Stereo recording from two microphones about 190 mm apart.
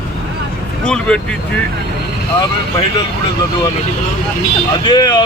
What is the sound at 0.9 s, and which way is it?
Speech, 5° left (ahead or behind).